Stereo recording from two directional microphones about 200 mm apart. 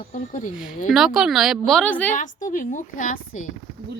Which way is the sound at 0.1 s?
40° left (ahead or behind).